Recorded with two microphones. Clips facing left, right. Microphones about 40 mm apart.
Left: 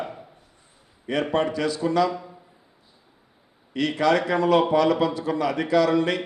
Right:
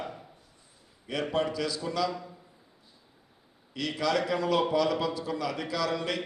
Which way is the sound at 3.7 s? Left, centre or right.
Left.